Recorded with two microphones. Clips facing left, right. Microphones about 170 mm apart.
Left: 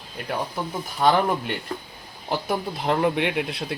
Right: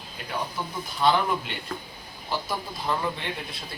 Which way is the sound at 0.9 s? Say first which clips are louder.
Left 3 dB; 45° left (ahead or behind).